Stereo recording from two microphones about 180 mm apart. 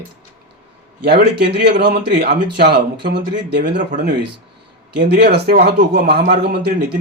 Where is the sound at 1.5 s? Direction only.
65° right (ahead or behind).